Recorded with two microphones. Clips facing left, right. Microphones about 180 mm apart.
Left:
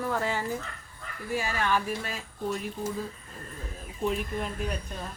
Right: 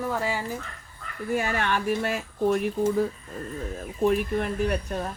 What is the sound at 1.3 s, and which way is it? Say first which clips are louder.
Speech: right 2 dB; 60° right (ahead or behind).